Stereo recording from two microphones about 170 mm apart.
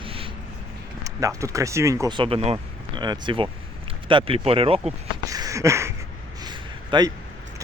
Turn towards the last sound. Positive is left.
turn(degrees=-25)  # may be behind; listen again after turning